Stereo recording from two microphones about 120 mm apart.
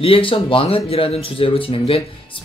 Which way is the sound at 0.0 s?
50° left (ahead or behind).